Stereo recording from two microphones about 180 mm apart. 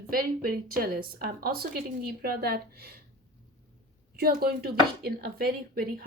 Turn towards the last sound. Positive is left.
turn(degrees=-55)  # may be behind; listen again after turning